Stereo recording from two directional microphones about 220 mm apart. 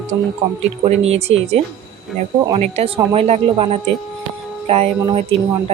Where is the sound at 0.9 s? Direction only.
30° right (ahead or behind).